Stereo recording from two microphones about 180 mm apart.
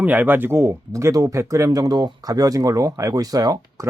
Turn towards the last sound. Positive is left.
turn(degrees=-20)  # may be behind; listen again after turning